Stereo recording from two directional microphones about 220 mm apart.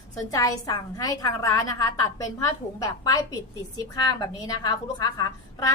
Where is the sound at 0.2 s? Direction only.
15° left (ahead or behind).